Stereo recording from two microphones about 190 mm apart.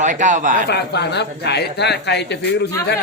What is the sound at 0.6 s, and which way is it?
A man's voice, 60° left (ahead or behind).